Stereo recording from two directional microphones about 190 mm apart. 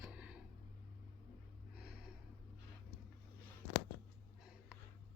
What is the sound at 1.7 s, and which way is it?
Gasp, 5° right (ahead or behind).